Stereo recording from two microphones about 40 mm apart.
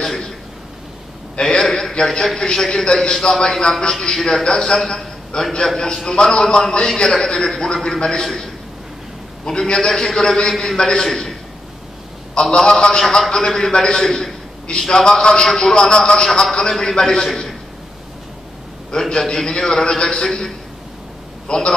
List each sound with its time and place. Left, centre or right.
0.0 s a man's voice: centre
1.3 s a man's voice: centre
9.5 s a man's voice: centre
12.4 s a man's voice: centre
18.9 s a man's voice: centre